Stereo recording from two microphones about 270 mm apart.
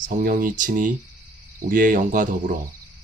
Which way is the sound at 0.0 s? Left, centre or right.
Right.